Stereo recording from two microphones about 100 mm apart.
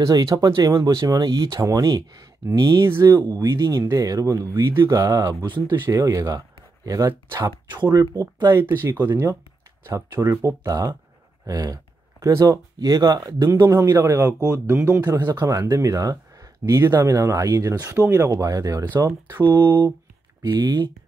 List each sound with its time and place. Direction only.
0.5 s speech: 45° right (ahead or behind)
5.9 s speech: 35° right (ahead or behind)
8.5 s speech: 25° right (ahead or behind)
19.4 s speech: 45° right (ahead or behind)